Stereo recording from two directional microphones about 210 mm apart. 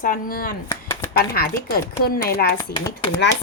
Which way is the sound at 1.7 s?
45° left (ahead or behind).